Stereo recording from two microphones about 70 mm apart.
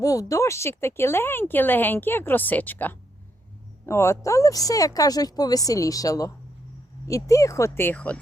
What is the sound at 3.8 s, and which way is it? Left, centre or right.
Speech, left.